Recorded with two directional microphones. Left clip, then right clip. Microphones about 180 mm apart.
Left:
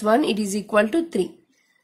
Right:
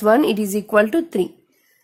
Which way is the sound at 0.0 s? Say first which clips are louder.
Right 4 dB; 20° right (ahead or behind).